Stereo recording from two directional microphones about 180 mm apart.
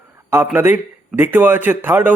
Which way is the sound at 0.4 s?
10° right (ahead or behind).